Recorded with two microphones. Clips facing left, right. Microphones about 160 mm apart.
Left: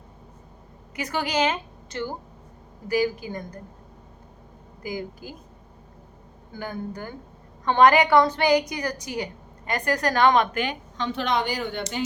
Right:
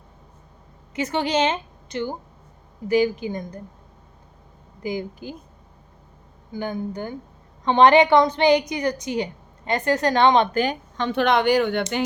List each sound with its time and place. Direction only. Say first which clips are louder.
0.9 s a woman's voice: right 3 dB; 25° right (ahead or behind)
4.8 s a woman's voice: right 4 dB; 25° right (ahead or behind)
6.5 s a woman's voice: right 5 dB; 20° right (ahead or behind); by 10.8 s 35° right (ahead or behind)
10.9 s a woman's voice: right 5 dB; 60° right (ahead or behind)